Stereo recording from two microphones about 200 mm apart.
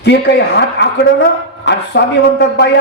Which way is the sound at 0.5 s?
55° left (ahead or behind).